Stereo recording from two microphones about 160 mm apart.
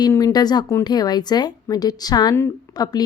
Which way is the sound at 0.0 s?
20° left (ahead or behind).